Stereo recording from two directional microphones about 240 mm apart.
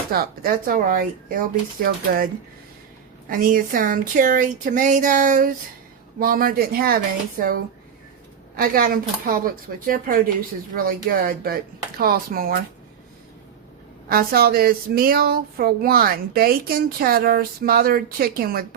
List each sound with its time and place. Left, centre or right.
0.1 s speech: right
14.1 s speech: right